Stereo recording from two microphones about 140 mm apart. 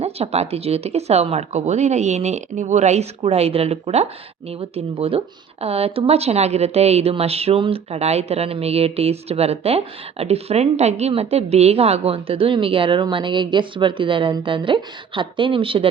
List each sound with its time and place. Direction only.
0.0 s speech: 50° right (ahead or behind)